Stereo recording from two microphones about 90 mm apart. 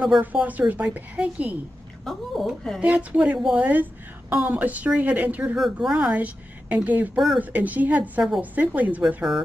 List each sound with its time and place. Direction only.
0.0 s a woman's voice: 15° right (ahead or behind)
2.0 s a woman's voice: centre (ahead or behind)
2.8 s a woman's voice: 15° right (ahead or behind)